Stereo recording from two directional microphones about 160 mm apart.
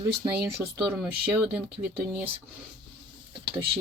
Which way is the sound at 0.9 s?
5° right (ahead or behind).